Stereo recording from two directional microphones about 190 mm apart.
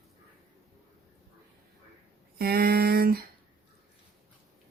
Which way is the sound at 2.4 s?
55° right (ahead or behind).